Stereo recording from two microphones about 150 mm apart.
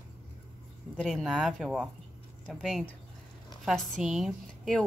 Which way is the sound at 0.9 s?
Centre (ahead or behind).